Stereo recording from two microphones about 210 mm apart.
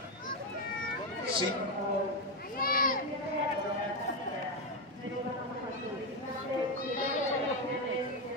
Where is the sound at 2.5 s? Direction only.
45° left (ahead or behind).